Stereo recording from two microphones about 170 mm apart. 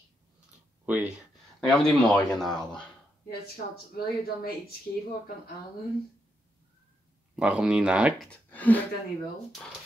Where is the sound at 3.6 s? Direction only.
50° left (ahead or behind).